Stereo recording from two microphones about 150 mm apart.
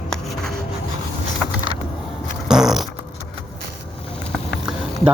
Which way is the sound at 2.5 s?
Centre (ahead or behind).